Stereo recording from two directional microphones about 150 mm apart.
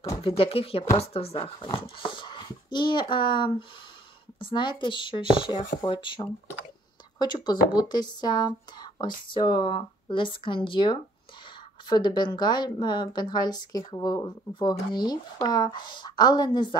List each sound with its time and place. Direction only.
0.4 s a woman's voice: 40° left (ahead or behind)